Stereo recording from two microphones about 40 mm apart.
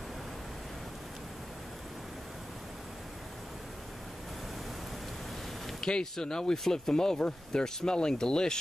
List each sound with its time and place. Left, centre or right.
5.7 s speech: centre
7.2 s speech: left